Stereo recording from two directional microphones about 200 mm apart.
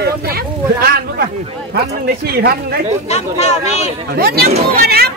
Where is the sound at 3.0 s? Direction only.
35° left (ahead or behind).